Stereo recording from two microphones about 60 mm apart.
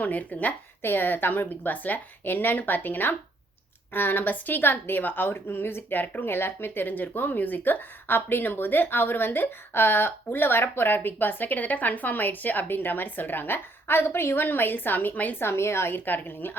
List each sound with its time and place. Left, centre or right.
0.0 s speech: left
0.8 s a woman's voice: left
15.4 s a woman's voice: left